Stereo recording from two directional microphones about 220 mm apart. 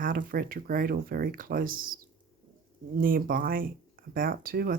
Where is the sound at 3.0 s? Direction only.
40° right (ahead or behind).